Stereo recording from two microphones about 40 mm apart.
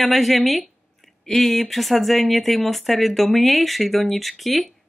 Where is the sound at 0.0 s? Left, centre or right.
Centre.